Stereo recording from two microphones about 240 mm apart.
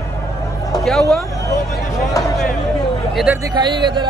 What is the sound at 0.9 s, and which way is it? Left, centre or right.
Speech, centre.